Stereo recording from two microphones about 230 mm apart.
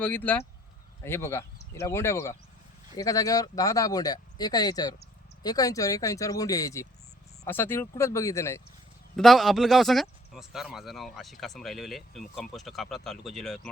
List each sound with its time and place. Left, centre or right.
0.0 s speech: centre
9.1 s speech: centre